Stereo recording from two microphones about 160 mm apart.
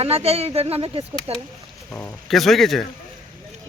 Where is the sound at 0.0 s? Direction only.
40° right (ahead or behind).